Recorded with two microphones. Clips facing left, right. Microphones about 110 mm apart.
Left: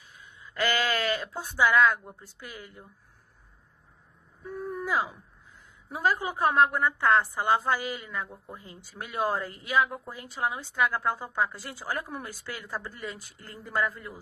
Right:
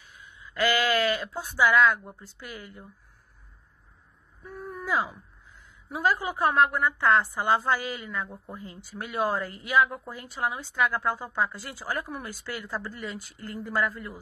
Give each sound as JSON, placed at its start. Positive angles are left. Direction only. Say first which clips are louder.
{"t": 0.6, "sound": "speech", "louder": "right 3 dB", "side_deg": 20}
{"t": 4.8, "sound": "speech", "louder": "right 2 dB", "side_deg": 20}